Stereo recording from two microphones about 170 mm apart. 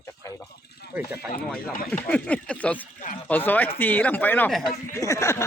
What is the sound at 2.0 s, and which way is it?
Speech, 5° left (ahead or behind).